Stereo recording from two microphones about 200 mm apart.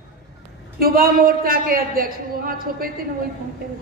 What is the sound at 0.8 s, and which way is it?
A man's voice, 45° right (ahead or behind).